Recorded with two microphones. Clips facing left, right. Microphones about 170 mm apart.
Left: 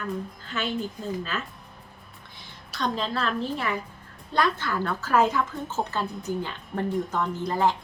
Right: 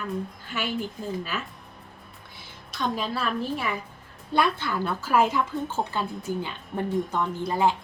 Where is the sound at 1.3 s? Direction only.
10° right (ahead or behind).